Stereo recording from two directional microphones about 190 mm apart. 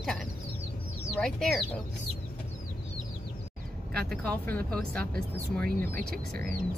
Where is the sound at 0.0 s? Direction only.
Centre (ahead or behind).